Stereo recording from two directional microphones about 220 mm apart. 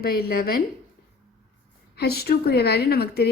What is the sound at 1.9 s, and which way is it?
A woman's voice, 45° left (ahead or behind).